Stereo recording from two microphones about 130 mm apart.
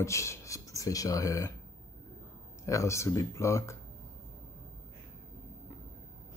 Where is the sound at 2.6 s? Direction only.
25° left (ahead or behind).